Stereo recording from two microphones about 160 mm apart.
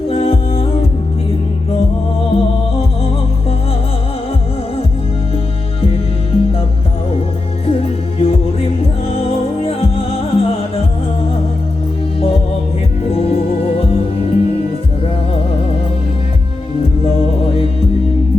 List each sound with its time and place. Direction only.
0.1 s music: 35° left (ahead or behind)
2.3 s music: 35° left (ahead or behind)
5.8 s music: 35° left (ahead or behind)
7.7 s music: 35° left (ahead or behind)
13.1 s music: 35° left (ahead or behind)
17.1 s music: 35° left (ahead or behind)